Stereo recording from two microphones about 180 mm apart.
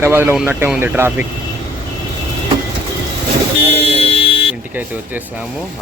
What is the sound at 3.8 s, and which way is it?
Car alarm, 35° left (ahead or behind).